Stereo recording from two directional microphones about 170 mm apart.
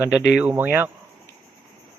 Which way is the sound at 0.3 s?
10° right (ahead or behind).